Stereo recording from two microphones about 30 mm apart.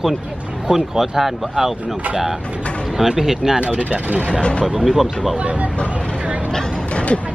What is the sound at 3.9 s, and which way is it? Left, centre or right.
Speech, right.